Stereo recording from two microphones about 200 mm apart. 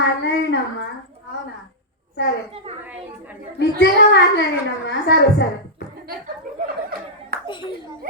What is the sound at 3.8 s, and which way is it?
A child's voice, 60° left (ahead or behind).